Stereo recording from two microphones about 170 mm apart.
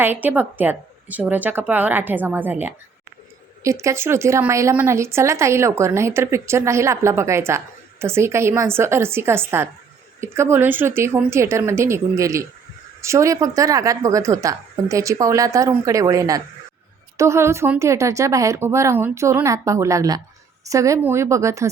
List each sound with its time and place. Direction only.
0.0 s a woman's voice: 10° right (ahead or behind)